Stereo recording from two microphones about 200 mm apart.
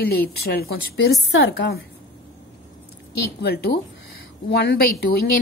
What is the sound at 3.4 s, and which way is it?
Speech, 55° left (ahead or behind).